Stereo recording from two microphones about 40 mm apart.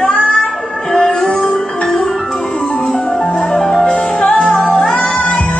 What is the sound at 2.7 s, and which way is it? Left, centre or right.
Music, left.